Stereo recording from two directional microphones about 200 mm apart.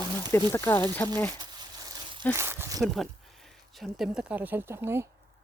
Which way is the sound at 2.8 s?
Centre (ahead or behind).